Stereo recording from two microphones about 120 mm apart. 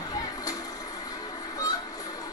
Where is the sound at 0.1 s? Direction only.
30° left (ahead or behind).